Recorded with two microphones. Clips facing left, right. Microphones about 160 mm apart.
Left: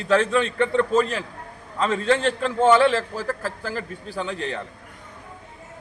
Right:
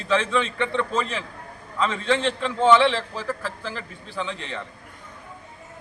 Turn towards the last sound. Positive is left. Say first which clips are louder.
# left 3 dB
turn(degrees=40)  # may be behind; listen again after turning